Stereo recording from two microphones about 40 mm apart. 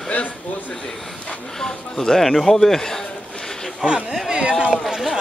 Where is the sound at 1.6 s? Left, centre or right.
Centre.